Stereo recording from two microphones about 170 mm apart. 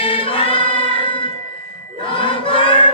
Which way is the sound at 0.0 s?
30° left (ahead or behind).